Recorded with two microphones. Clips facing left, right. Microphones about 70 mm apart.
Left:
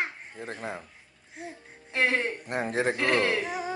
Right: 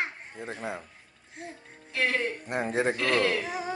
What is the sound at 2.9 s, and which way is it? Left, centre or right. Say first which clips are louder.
Speech: left 1 dB; left.